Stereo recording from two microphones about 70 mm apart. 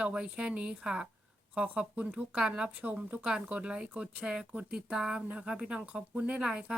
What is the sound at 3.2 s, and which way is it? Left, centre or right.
Speech, centre.